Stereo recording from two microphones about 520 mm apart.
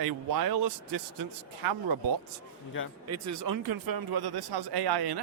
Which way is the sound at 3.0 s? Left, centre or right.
Right.